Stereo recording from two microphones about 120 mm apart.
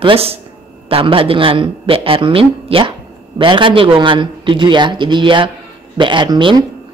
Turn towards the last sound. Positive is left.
turn(degrees=-40)  # may be behind; listen again after turning